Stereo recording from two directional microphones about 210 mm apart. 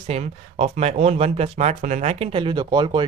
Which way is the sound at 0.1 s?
30° right (ahead or behind).